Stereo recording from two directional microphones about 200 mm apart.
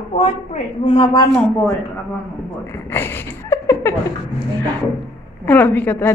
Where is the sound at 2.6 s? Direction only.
10° left (ahead or behind).